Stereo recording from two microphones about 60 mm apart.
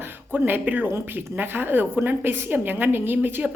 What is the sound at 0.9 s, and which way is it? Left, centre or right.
Speech, right.